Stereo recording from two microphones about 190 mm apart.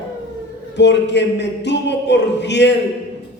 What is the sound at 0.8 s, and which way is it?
Speech, 65° left (ahead or behind).